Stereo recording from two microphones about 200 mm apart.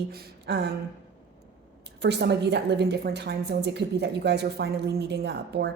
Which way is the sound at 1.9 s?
55° right (ahead or behind).